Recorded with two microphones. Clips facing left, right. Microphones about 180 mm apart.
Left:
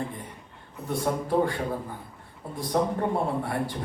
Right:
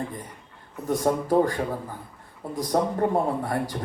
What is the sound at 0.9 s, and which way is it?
Speech, 40° right (ahead or behind).